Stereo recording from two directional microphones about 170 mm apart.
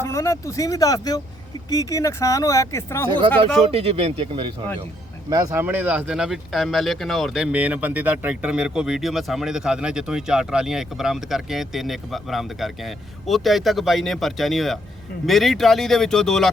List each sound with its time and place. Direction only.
0.0 s speech: 20° left (ahead or behind)
3.6 s speech: 35° right (ahead or behind); by 16.5 s centre (ahead or behind)